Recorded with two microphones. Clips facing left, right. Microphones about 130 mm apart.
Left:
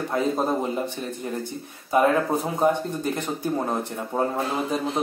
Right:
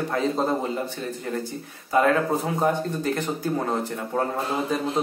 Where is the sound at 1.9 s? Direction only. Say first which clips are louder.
Even; 20° left (ahead or behind).